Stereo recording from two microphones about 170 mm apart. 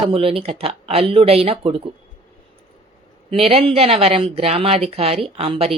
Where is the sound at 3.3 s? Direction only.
35° right (ahead or behind).